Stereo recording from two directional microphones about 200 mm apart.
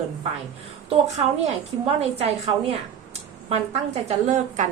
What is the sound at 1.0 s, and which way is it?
A woman's voice, 35° right (ahead or behind).